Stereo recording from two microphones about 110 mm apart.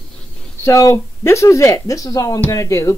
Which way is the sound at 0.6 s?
25° left (ahead or behind).